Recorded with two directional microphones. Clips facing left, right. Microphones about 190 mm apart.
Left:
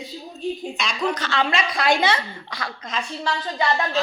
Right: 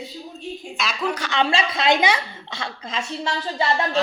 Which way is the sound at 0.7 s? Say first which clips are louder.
Left 1 dB; 5° right (ahead or behind).